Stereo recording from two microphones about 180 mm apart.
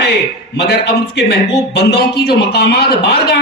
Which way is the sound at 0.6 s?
65° left (ahead or behind).